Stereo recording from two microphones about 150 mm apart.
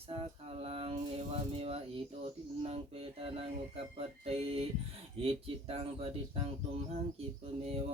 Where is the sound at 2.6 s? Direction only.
40° right (ahead or behind).